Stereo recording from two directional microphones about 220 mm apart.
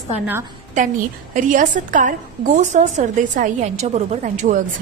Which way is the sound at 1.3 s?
35° right (ahead or behind).